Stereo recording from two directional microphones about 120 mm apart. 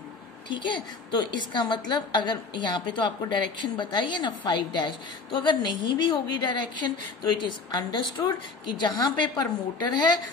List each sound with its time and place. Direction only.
0.5 s a woman's voice: 40° left (ahead or behind)
7.7 s a woman's voice: 35° left (ahead or behind)